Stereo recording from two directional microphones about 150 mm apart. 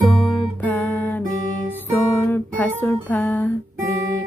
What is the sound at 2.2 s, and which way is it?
Music, 10° left (ahead or behind).